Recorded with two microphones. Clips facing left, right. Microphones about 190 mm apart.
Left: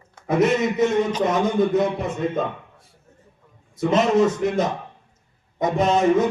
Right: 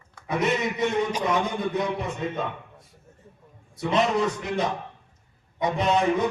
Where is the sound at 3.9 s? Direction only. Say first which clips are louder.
Left 5 dB; 45° left (ahead or behind).